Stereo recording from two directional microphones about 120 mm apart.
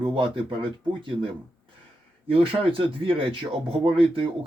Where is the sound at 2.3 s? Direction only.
50° right (ahead or behind).